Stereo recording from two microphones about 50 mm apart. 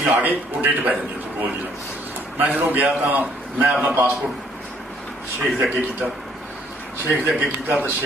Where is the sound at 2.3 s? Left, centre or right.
Right.